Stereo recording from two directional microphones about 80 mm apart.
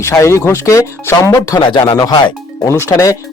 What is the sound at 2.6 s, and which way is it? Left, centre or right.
Speech, left.